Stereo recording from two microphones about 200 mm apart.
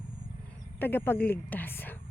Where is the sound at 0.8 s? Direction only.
10° left (ahead or behind).